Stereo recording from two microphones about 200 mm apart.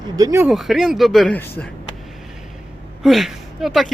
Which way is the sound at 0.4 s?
Centre (ahead or behind).